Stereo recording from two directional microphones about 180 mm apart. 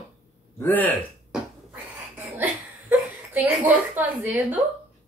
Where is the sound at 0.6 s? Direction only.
10° left (ahead or behind).